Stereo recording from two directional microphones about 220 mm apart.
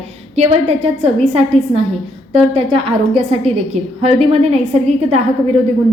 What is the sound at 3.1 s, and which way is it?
A woman's voice, 25° right (ahead or behind).